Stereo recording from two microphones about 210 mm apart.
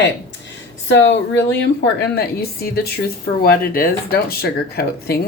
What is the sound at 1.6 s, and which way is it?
Speech, 50° left (ahead or behind).